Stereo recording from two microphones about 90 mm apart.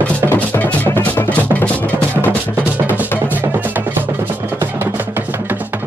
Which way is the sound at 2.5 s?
20° right (ahead or behind).